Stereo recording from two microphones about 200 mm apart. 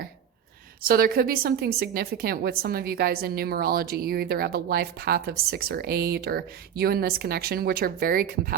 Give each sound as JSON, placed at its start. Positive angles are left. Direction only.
{"t": 0.9, "sound": "a woman's voice", "side_deg": -45}